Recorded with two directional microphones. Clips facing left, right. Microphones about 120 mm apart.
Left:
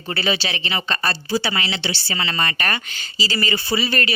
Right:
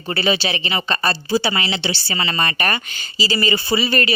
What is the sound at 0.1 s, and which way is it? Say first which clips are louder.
Speech: right 3 dB; 15° right (ahead or behind).